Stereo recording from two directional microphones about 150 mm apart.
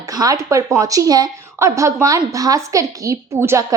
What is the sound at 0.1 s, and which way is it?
A woman's voice, 25° right (ahead or behind).